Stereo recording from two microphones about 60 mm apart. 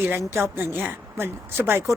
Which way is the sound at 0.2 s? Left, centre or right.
Right.